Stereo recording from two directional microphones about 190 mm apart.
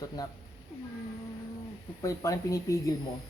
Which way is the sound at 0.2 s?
20° left (ahead or behind).